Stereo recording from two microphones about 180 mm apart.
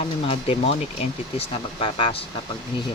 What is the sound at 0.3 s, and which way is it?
Speech, 30° left (ahead or behind).